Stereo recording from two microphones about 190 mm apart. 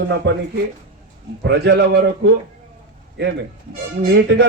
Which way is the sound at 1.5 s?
60° right (ahead or behind).